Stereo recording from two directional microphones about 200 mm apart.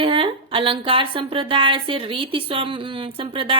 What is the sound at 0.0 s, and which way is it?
A woman's voice, 25° right (ahead or behind).